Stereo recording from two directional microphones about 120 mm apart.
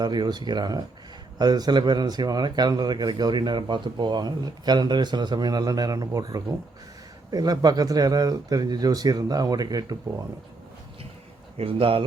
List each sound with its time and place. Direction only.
0.0 s speech: 35° right (ahead or behind)
11.5 s speech: 50° right (ahead or behind)